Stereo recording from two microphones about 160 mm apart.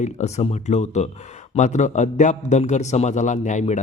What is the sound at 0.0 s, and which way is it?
A man's voice, 45° left (ahead or behind).